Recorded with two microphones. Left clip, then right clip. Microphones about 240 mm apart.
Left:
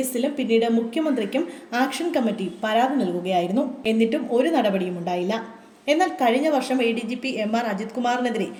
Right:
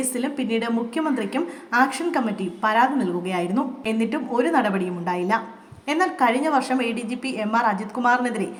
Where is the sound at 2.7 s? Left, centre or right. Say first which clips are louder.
Even; right.